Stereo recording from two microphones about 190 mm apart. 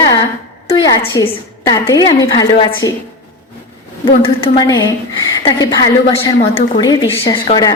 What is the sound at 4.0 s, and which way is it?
A woman's voice, 25° left (ahead or behind).